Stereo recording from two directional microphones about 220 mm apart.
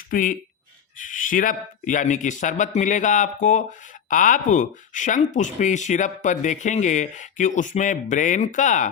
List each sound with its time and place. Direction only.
0.1 s speech: 40° left (ahead or behind)